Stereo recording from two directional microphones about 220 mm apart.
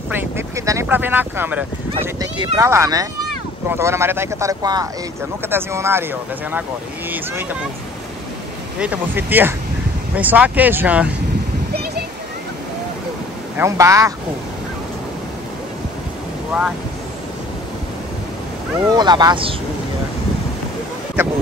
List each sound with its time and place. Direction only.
0.1 s vehicle: 10° right (ahead or behind)
2.0 s speech: 20° right (ahead or behind)
8.7 s speech: 5° right (ahead or behind)
11.7 s a sound: 45° right (ahead or behind)
13.6 s speech: 15° right (ahead or behind)
16.5 s speech: 5° right (ahead or behind)
18.9 s speech: 20° right (ahead or behind)